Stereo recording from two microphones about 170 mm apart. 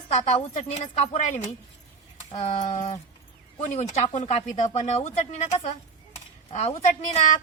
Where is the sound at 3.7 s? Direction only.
40° left (ahead or behind).